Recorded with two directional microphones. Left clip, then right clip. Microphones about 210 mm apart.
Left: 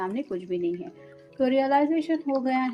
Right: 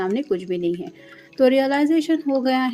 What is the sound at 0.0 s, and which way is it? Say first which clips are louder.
Speech: right 8 dB; 45° right (ahead or behind).